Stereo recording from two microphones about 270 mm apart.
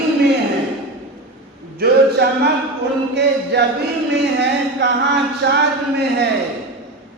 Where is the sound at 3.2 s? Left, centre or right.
Right.